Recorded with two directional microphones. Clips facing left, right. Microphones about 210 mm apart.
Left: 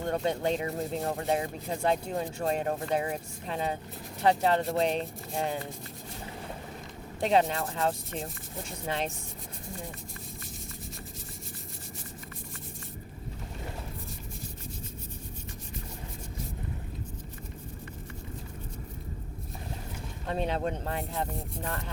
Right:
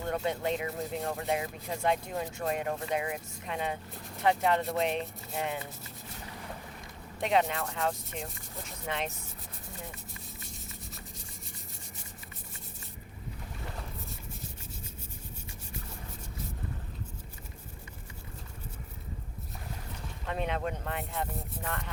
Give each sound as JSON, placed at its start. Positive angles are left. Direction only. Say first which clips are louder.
{"t": 0.0, "sound": "speech", "louder": "left 3 dB", "side_deg": 30}
{"t": 7.2, "sound": "speech", "louder": "left 3 dB", "side_deg": 35}
{"t": 20.2, "sound": "speech", "louder": "left 3 dB", "side_deg": 35}